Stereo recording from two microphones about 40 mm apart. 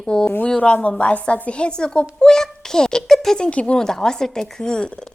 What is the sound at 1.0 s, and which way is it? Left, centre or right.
Speech, left.